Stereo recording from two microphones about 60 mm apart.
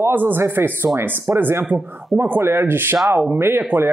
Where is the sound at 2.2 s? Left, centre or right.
Right.